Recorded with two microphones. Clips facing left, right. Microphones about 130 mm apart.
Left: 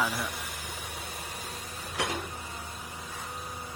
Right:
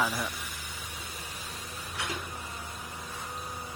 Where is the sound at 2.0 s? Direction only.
90° left.